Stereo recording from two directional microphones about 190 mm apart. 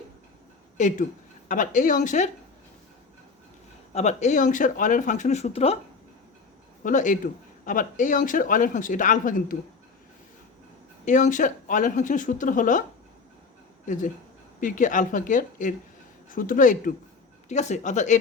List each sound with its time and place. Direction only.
0.8 s speech: 40° left (ahead or behind)
3.9 s speech: 35° left (ahead or behind)
6.8 s speech: 40° left (ahead or behind)
11.0 s speech: 40° left (ahead or behind)
13.8 s speech: 40° left (ahead or behind)